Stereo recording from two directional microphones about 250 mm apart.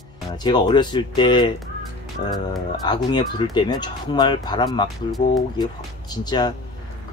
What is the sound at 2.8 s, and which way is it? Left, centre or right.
Speech, centre.